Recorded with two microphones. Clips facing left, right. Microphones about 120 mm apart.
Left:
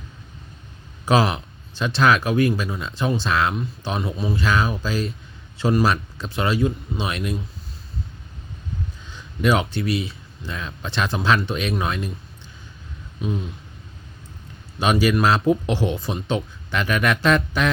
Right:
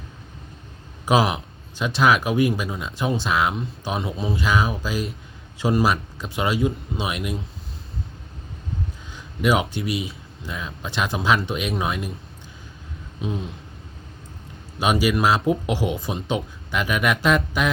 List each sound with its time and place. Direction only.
1.0 s speech: 15° right (ahead or behind)
7.0 s speech: 10° right (ahead or behind)
9.1 s speech: 10° right (ahead or behind)
13.2 s speech: 20° right (ahead or behind)
14.8 s speech: 10° right (ahead or behind)